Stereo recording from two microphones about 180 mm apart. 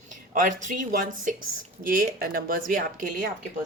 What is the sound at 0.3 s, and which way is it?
Speech, 45° right (ahead or behind).